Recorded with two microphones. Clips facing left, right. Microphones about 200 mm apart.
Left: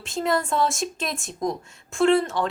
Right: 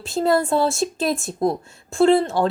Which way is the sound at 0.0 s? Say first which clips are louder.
Right 5 dB; 35° right (ahead or behind).